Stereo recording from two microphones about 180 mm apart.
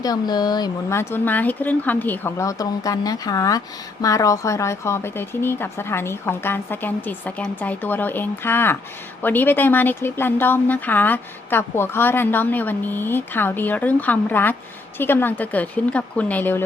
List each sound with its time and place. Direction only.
0.0 s speech: 20° left (ahead or behind)